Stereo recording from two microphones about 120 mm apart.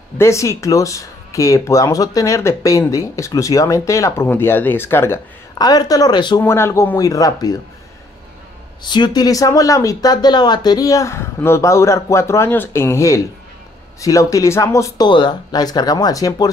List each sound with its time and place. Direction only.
0.2 s speech: 25° left (ahead or behind)
5.5 s speech: 35° left (ahead or behind)
6.4 s speech: 20° left (ahead or behind)
8.8 s speech: 40° left (ahead or behind)
15.0 s speech: 40° left (ahead or behind)